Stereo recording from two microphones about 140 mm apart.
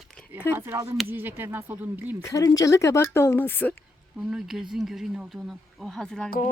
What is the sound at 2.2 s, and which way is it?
Speech, 25° left (ahead or behind).